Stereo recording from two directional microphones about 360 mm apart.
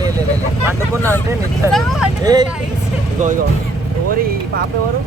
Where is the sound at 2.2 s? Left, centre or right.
Centre.